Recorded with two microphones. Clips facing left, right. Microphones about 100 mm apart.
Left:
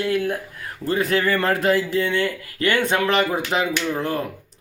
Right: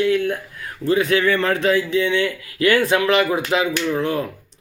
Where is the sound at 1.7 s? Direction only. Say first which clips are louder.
Right 2 dB; 40° left (ahead or behind).